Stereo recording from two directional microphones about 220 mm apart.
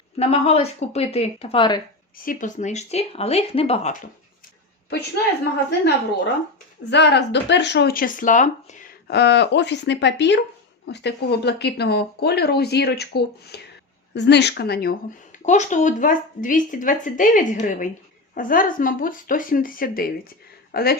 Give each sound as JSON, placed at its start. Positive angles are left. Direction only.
{"t": 0.2, "sound": "speech", "side_deg": 25}
{"t": 2.1, "sound": "speech", "side_deg": 40}
{"t": 4.9, "sound": "speech", "side_deg": 50}
{"t": 6.9, "sound": "speech", "side_deg": 50}
{"t": 9.1, "sound": "speech", "side_deg": 50}